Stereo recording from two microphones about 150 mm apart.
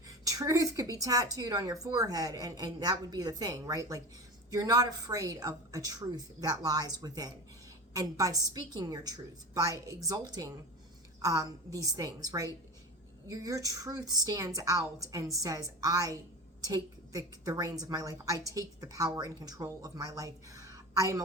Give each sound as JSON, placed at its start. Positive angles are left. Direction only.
{"t": 0.3, "sound": "a woman's voice", "side_deg": -20}